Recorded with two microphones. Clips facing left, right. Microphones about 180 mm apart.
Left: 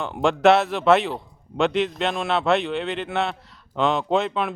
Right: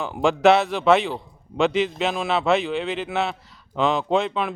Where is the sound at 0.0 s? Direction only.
Centre (ahead or behind).